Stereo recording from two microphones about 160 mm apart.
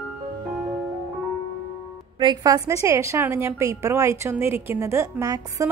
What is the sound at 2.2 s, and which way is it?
A woman's voice, 25° right (ahead or behind).